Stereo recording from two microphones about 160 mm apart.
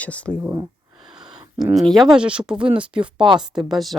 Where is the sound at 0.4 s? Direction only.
20° right (ahead or behind).